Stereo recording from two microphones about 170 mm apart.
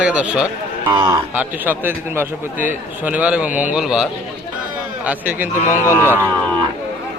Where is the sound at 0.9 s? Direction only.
25° right (ahead or behind).